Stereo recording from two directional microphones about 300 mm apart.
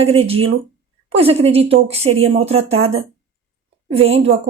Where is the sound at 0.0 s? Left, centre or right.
Centre.